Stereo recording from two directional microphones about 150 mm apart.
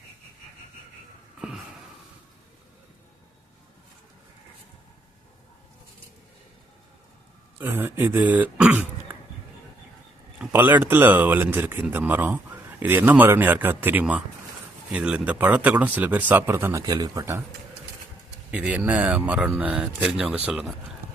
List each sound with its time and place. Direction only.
1.4 s a sound: 5° right (ahead or behind)
7.6 s speech: 15° right (ahead or behind)
10.3 s speech: 10° right (ahead or behind)
18.5 s speech: 10° right (ahead or behind)